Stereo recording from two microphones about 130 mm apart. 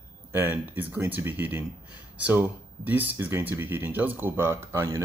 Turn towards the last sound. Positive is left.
turn(degrees=-20)  # may be behind; listen again after turning